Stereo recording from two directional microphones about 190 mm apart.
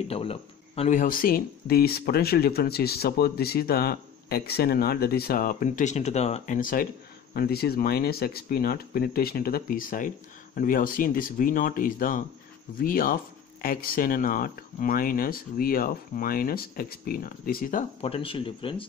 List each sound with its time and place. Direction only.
0.1 s speech: 30° left (ahead or behind); by 17.8 s 45° left (ahead or behind)
18.0 s speech: 30° left (ahead or behind)